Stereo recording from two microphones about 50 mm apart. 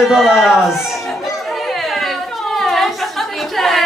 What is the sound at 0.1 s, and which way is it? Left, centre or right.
Speech, centre.